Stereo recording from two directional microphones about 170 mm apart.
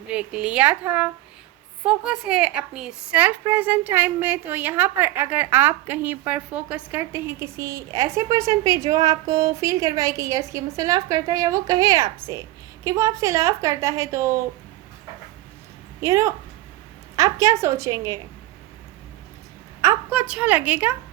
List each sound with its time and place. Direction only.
0.1 s a woman's voice: 5° right (ahead or behind)
16.0 s a woman's voice: 20° right (ahead or behind)
19.8 s a woman's voice: 10° right (ahead or behind)